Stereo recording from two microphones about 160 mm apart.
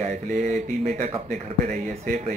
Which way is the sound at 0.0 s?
55° right (ahead or behind).